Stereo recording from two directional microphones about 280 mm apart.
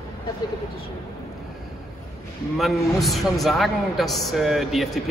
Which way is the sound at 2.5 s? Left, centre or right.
Centre.